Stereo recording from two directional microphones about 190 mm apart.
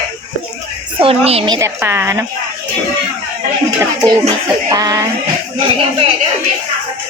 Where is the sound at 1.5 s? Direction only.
15° right (ahead or behind).